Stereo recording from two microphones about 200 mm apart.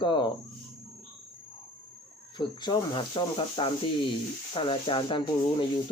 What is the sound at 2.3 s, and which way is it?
Speech, 25° left (ahead or behind).